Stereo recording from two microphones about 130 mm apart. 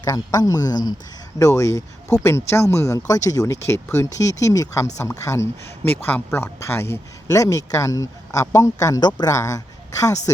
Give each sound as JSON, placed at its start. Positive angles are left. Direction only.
{"t": 0.0, "sound": "speech", "side_deg": 30}